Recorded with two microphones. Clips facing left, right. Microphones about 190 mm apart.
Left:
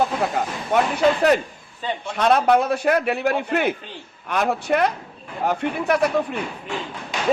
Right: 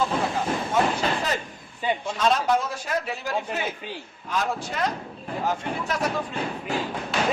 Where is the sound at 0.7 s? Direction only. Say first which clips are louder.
Left 4 dB; 65° left (ahead or behind).